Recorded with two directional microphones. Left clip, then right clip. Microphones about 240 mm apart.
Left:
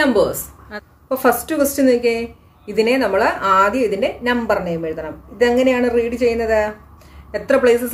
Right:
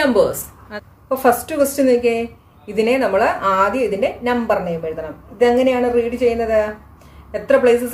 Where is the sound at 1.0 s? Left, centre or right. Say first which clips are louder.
Right 1 dB; left.